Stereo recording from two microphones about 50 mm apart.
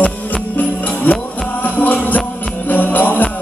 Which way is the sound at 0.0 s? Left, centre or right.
Left.